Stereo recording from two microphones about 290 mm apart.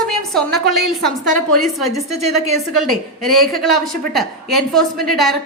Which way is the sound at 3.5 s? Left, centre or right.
Centre.